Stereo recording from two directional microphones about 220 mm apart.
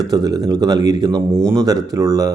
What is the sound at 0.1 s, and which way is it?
Speech, 15° right (ahead or behind).